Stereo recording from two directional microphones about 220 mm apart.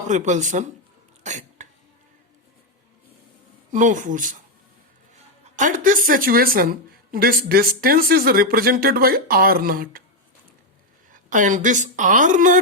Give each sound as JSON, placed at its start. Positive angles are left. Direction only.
{"t": 0.1, "sound": "speech", "side_deg": -35}
{"t": 1.2, "sound": "cough", "side_deg": -35}
{"t": 3.7, "sound": "speech", "side_deg": -35}
{"t": 5.5, "sound": "speech", "side_deg": -35}
{"t": 11.1, "sound": "speech", "side_deg": -35}